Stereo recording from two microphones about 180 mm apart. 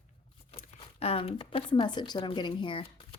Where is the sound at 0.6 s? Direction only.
35° left (ahead or behind).